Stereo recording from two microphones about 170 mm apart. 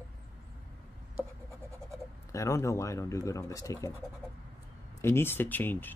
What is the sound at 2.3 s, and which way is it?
Speech, 15° left (ahead or behind).